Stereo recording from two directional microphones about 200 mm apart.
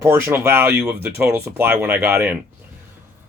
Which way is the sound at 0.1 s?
10° right (ahead or behind).